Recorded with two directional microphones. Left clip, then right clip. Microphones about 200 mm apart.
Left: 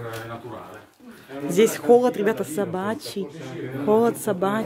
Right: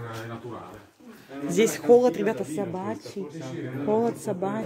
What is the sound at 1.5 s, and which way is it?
Speech, 5° left (ahead or behind).